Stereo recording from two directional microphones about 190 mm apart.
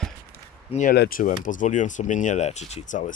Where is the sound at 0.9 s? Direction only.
50° left (ahead or behind).